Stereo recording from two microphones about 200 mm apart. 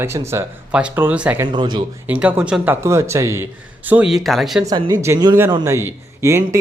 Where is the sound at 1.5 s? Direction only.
20° right (ahead or behind).